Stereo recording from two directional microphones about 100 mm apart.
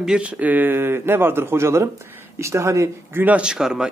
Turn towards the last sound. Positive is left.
turn(degrees=-5)  # may be behind; listen again after turning